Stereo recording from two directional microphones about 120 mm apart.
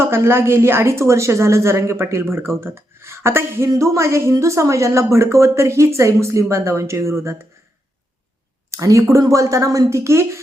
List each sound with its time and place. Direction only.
0.0 s speech: 20° right (ahead or behind)
8.7 s speech: 25° right (ahead or behind)